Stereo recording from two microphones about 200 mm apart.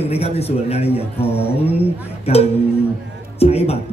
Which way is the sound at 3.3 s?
30° left (ahead or behind).